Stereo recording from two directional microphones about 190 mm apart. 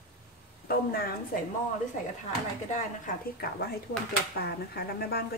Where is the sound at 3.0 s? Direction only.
55° left (ahead or behind).